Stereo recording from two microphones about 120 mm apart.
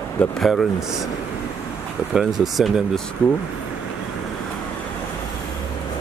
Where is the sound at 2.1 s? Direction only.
5° right (ahead or behind).